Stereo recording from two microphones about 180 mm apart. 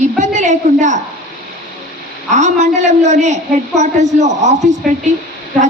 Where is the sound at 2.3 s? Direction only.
40° right (ahead or behind).